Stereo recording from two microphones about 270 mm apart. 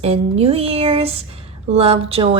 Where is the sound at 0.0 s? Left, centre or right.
Right.